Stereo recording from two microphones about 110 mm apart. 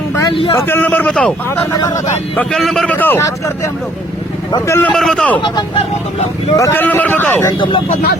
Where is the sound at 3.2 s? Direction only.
30° left (ahead or behind).